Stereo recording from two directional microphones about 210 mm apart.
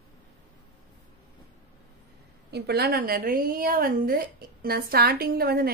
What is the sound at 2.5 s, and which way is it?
A woman's voice, 50° right (ahead or behind).